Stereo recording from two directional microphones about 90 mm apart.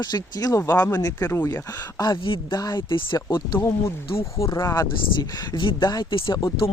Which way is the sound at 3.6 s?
35° left (ahead or behind).